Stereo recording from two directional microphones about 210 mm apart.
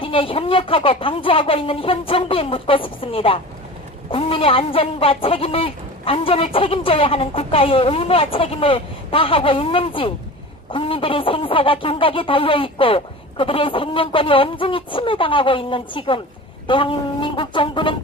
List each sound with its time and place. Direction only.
0.0 s speech: 25° left (ahead or behind)